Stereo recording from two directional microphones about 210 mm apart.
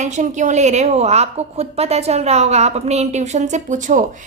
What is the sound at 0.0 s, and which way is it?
A woman's voice, 35° right (ahead or behind).